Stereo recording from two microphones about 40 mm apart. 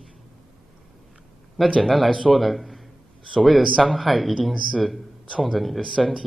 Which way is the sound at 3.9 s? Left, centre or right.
Centre.